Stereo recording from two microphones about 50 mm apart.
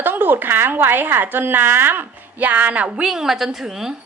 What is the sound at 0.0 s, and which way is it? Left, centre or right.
Speech, right.